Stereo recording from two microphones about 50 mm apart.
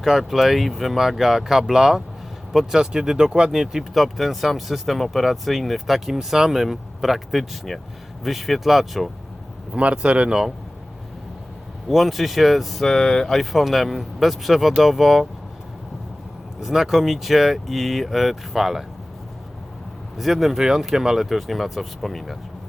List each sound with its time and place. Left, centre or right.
0.0 s speech: centre
9.7 s speech: right
11.9 s speech: centre
12.9 s speech: centre
13.3 s speech: centre
16.6 s speech: centre
20.1 s speech: centre